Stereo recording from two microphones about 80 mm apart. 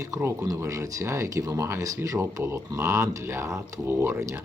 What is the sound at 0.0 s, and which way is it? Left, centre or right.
Speech, right.